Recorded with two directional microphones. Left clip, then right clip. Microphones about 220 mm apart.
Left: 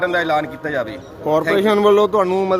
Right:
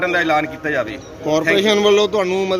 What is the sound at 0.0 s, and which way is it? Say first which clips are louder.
A man's voice: right 1 dB; 5° left (ahead or behind).